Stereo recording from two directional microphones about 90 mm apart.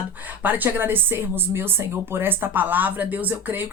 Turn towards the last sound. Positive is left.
turn(degrees=-20)  # may be behind; listen again after turning